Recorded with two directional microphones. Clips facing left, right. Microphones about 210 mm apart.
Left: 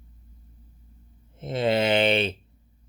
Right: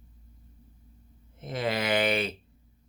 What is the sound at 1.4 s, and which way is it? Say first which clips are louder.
Speech: left 7 dB; 25° left (ahead or behind).